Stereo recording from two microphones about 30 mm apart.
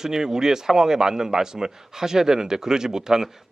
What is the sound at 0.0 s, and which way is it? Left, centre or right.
A man's voice, centre.